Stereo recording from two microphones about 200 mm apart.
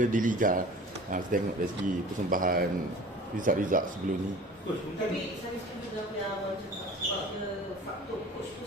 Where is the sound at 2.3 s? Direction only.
45° right (ahead or behind).